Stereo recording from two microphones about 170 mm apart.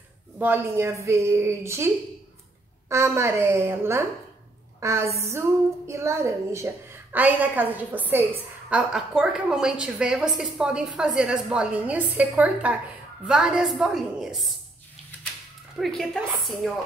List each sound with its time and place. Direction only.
0.4 s a woman's voice: 10° right (ahead or behind)
2.9 s a woman's voice: 15° right (ahead or behind); by 14.5 s centre (ahead or behind)
15.8 s a woman's voice: centre (ahead or behind)